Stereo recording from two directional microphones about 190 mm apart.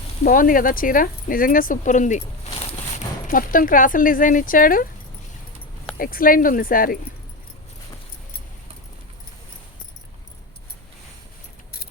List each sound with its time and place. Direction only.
0.3 s speech: 45° left (ahead or behind)
6.0 s speech: 50° left (ahead or behind)